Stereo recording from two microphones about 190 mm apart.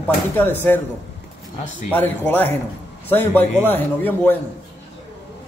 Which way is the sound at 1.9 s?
10° left (ahead or behind).